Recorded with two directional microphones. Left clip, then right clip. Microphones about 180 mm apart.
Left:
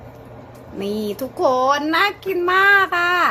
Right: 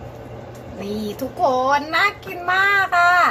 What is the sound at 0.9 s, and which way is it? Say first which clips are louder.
Speech: left 1 dB; 45° left (ahead or behind).